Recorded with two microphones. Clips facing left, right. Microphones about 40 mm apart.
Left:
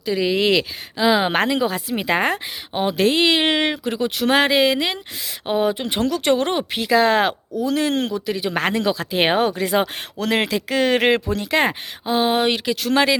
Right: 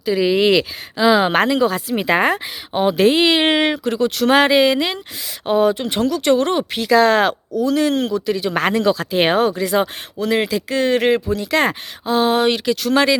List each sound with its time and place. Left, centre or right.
0.0 s speech: centre
2.0 s speech: centre
3.8 s speech: centre
4.3 s speech: centre
5.7 s speech: left
6.1 s speech: left
6.6 s speech: centre
7.6 s speech: left
8.5 s speech: centre
9.3 s speech: left
10.2 s speech: left
11.5 s speech: centre